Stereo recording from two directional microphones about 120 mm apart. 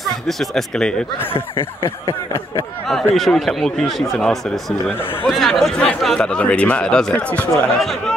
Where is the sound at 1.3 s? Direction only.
45° left (ahead or behind).